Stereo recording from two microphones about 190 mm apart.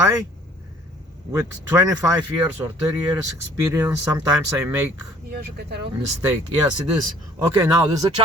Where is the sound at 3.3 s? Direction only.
15° right (ahead or behind).